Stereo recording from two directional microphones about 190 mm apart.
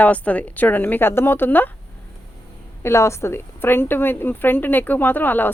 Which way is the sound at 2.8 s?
15° left (ahead or behind).